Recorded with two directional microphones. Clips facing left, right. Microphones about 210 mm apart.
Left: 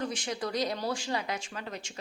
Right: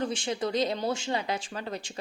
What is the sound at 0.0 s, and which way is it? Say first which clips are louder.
A woman's voice: right 4 dB; 30° right (ahead or behind).